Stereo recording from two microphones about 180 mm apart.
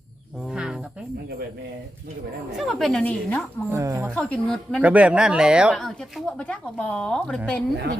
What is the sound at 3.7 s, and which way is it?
Speech, 15° right (ahead or behind).